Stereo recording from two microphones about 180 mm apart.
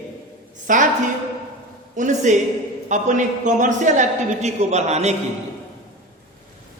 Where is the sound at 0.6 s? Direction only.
45° right (ahead or behind).